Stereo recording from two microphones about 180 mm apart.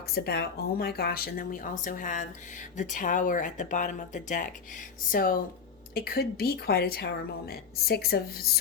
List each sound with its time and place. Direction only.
0.1 s speech: 60° left (ahead or behind)